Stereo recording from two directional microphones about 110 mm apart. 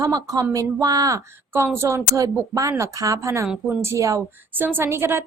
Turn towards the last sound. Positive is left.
turn(degrees=-20)  # may be behind; listen again after turning